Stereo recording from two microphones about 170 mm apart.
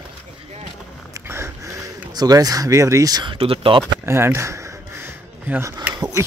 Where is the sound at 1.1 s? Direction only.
15° right (ahead or behind); by 3.8 s 30° right (ahead or behind).